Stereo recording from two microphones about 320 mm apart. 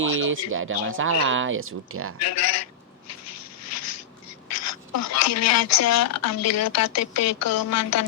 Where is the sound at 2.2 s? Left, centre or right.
Left.